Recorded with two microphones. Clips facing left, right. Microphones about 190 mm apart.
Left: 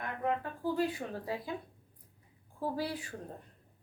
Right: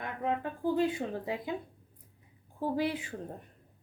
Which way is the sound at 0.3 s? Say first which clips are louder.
Right 3 dB; 20° right (ahead or behind).